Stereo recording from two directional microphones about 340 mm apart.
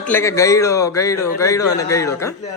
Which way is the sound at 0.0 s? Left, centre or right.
Centre.